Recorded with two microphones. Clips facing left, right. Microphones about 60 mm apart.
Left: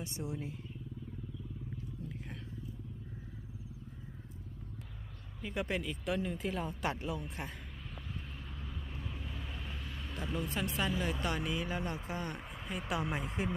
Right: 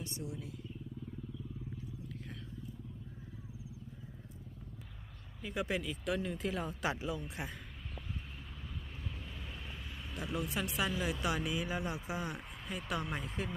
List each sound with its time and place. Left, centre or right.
0.0 s vehicle: left
0.3 s speech: left
2.0 s vehicle: left
5.4 s speech: centre
8.6 s vehicle: centre
12.4 s speech: centre